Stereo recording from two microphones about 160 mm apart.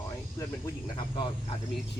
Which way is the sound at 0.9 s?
35° left (ahead or behind).